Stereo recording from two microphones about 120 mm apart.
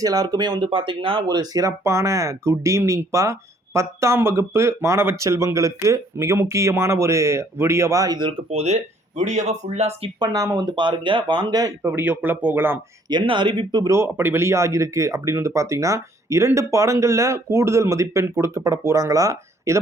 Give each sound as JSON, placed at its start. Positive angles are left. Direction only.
{"t": 0.0, "sound": "speech", "side_deg": -30}
{"t": 0.7, "sound": "speech", "side_deg": -45}
{"t": 1.4, "sound": "speech", "side_deg": -30}
{"t": 8.4, "sound": "speech", "side_deg": -65}
{"t": 10.2, "sound": "speech", "side_deg": -30}
{"t": 11.9, "sound": "speech", "side_deg": -15}
{"t": 13.1, "sound": "speech", "side_deg": -40}
{"t": 13.9, "sound": "speech", "side_deg": -20}